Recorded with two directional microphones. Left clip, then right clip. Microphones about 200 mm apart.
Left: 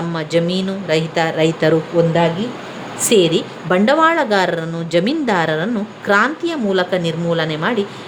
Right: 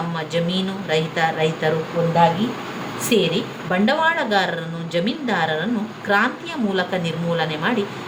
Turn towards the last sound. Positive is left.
turn(degrees=35)  # may be behind; listen again after turning